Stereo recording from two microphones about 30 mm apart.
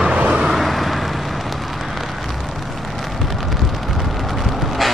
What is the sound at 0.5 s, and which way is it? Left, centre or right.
Vehicle, centre.